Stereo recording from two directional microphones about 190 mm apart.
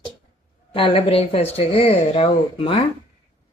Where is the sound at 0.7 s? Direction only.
30° left (ahead or behind).